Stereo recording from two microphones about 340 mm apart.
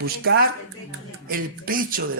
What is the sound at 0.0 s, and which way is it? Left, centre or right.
A man's voice, right.